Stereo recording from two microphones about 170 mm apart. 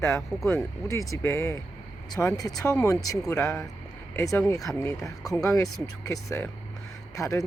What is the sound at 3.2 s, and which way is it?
Speech, 15° left (ahead or behind).